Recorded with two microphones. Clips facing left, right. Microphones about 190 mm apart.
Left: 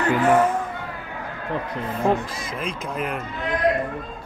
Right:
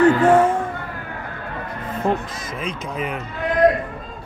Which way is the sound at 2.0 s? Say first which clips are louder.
Even; centre (ahead or behind).